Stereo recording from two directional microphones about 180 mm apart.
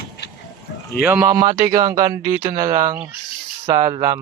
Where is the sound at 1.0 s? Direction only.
10° right (ahead or behind).